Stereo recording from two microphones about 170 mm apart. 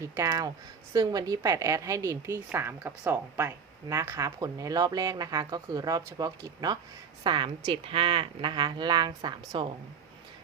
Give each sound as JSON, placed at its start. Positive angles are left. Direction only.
{"t": 0.0, "sound": "a woman's voice", "side_deg": -15}